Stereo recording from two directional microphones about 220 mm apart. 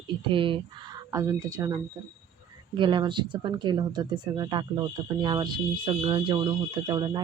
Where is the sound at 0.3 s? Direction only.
25° right (ahead or behind).